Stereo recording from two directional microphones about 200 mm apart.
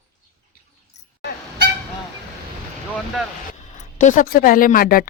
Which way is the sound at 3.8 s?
40° left (ahead or behind).